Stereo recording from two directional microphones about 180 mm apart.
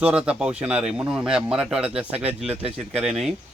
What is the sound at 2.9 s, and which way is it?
Speech, centre (ahead or behind).